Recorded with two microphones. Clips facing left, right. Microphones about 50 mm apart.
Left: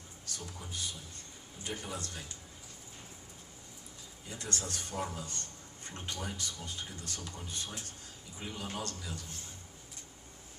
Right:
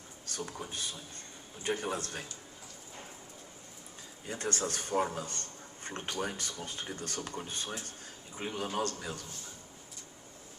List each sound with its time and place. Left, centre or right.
0.3 s a man's voice: right
4.3 s a man's voice: right